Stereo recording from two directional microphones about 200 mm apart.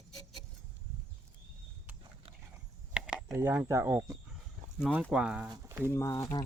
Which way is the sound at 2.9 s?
5° right (ahead or behind).